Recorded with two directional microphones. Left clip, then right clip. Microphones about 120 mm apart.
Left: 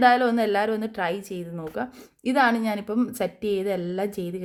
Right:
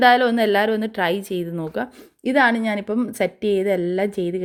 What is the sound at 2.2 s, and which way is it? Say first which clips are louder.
A woman's voice: right 4 dB; 10° right (ahead or behind).